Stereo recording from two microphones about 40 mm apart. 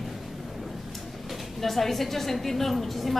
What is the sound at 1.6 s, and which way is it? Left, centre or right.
A woman's voice, centre.